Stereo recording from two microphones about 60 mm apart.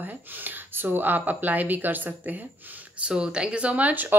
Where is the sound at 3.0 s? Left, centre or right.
Centre.